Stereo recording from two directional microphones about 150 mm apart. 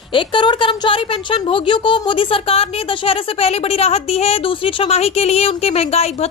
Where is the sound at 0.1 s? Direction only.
35° left (ahead or behind).